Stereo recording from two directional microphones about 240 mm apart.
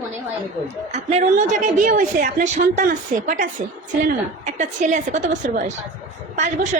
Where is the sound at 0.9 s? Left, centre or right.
Right.